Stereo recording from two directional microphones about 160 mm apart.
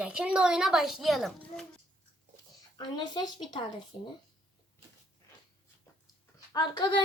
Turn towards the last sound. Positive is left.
turn(degrees=25)  # may be behind; listen again after turning